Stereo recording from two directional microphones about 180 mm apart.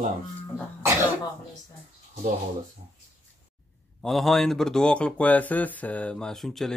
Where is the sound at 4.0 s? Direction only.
Centre (ahead or behind).